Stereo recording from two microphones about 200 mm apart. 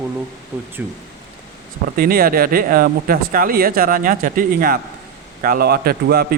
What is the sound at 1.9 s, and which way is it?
Speech, 50° right (ahead or behind).